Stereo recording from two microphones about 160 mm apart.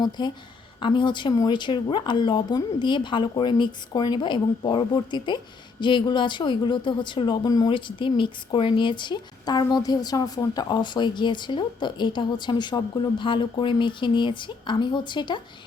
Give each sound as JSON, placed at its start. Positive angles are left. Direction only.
{"t": 0.0, "sound": "a woman's voice", "side_deg": 25}